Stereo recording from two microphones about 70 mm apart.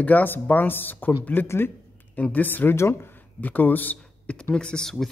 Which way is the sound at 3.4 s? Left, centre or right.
Left.